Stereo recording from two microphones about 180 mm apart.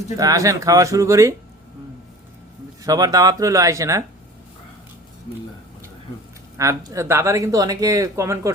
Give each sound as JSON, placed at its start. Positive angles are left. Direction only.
{"t": 0.2, "sound": "speech", "side_deg": -20}
{"t": 2.8, "sound": "speech", "side_deg": -20}
{"t": 6.6, "sound": "speech", "side_deg": -15}